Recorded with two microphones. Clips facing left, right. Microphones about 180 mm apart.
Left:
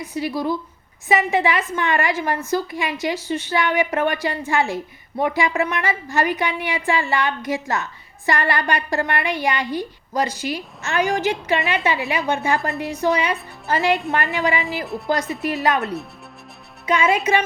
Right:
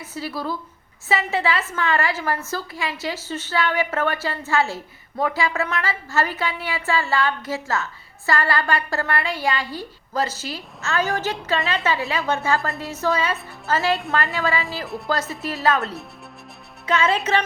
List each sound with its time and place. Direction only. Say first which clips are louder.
0.0 s a woman's voice: left 5 dB; 15° left (ahead or behind)
14.8 s speech: left 3 dB; centre (ahead or behind)
15.4 s a woman's voice: left 1 dB; 15° left (ahead or behind)